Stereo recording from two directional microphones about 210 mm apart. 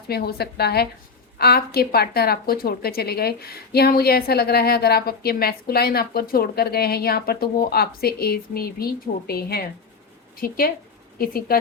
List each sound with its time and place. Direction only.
0.1 s a woman's voice: 50° left (ahead or behind)